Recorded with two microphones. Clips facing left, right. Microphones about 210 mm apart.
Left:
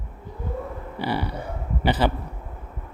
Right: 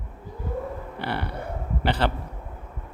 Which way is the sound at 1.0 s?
60° right (ahead or behind).